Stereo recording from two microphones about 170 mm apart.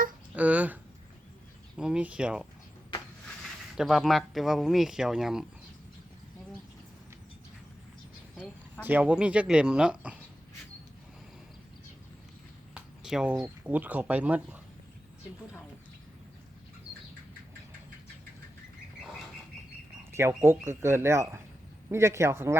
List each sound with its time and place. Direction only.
0.3 s speech: 10° right (ahead or behind)
3.8 s speech: centre (ahead or behind)
8.8 s speech: 10° right (ahead or behind)
12.7 s speech: 5° right (ahead or behind)
20.1 s speech: 15° right (ahead or behind)